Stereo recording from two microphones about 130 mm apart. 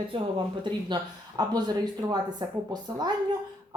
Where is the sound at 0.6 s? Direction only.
35° right (ahead or behind).